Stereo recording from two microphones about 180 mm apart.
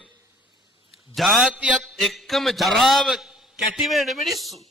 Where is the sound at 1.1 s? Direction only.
Centre (ahead or behind).